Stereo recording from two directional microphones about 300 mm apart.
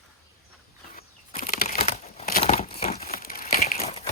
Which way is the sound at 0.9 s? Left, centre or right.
Left.